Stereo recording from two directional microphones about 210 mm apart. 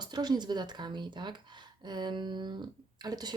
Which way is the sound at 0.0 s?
20° right (ahead or behind).